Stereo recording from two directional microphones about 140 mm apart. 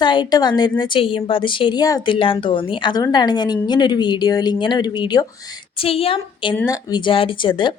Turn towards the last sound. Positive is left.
turn(degrees=35)  # may be behind; listen again after turning